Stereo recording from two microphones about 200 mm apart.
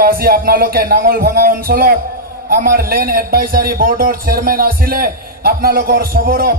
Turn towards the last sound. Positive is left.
turn(degrees=-45)  # may be behind; listen again after turning